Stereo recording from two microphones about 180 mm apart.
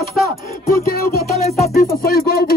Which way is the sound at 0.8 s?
55° left (ahead or behind).